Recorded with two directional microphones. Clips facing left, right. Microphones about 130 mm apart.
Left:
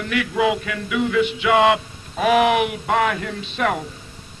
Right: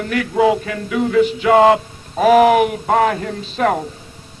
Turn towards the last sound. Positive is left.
turn(degrees=-40)  # may be behind; listen again after turning